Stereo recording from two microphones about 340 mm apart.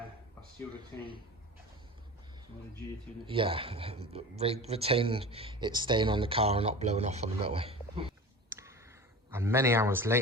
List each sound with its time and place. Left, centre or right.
3.2 s a man's voice: centre